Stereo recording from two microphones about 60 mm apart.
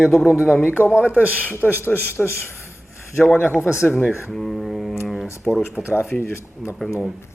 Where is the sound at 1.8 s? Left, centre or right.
Left.